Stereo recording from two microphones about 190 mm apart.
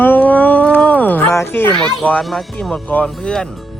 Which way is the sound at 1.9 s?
Centre (ahead or behind).